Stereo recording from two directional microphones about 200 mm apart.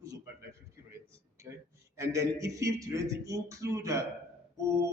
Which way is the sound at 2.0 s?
15° right (ahead or behind).